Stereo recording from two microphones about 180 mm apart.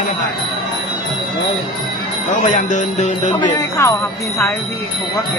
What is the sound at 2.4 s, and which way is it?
Music, 40° left (ahead or behind).